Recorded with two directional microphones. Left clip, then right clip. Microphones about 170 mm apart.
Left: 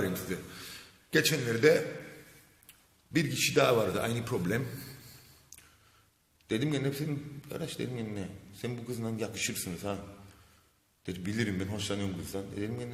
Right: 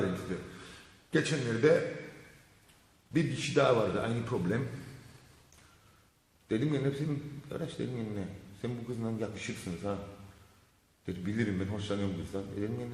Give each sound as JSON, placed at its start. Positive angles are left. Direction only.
{"t": 0.3, "sound": "a man's voice", "side_deg": 20}
{"t": 3.1, "sound": "a man's voice", "side_deg": 10}
{"t": 6.5, "sound": "a man's voice", "side_deg": 10}
{"t": 11.0, "sound": "a man's voice", "side_deg": 10}